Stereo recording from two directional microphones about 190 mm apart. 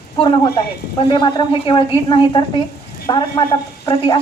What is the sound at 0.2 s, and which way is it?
A woman's voice, 20° left (ahead or behind).